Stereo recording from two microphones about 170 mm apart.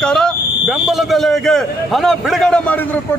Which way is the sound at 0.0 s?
5° left (ahead or behind).